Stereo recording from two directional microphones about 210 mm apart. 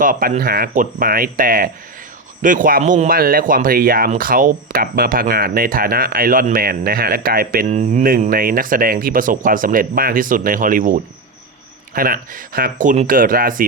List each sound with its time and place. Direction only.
0.0 s speech: 40° right (ahead or behind)